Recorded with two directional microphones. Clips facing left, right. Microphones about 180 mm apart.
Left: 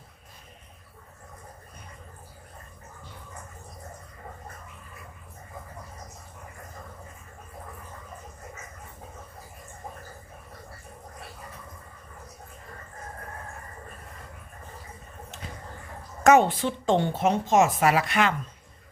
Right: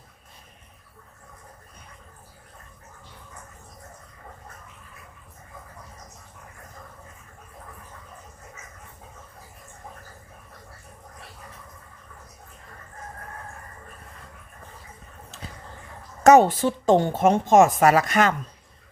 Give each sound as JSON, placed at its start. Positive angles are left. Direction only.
{"t": 16.2, "sound": "a woman's voice", "side_deg": -40}